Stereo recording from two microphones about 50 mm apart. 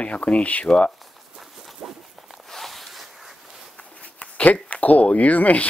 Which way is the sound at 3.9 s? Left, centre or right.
Left.